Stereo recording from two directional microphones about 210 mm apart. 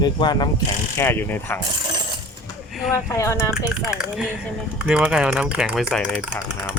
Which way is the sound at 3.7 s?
5° right (ahead or behind).